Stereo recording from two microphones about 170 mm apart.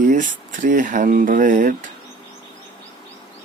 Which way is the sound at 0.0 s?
50° right (ahead or behind).